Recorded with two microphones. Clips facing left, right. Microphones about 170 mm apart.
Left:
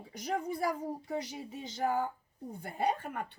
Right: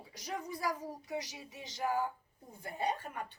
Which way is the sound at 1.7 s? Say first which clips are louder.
Left 2 dB; 55° left (ahead or behind).